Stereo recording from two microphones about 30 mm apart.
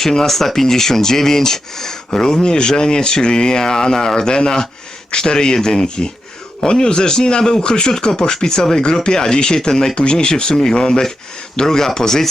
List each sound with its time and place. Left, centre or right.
0.0 s speech: centre
9.9 s speech: left